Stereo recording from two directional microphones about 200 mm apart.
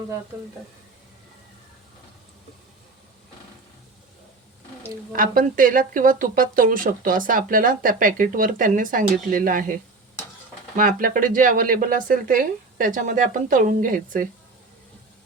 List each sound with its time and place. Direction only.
5.1 s speech: 45° right (ahead or behind)
10.8 s speech: 45° right (ahead or behind)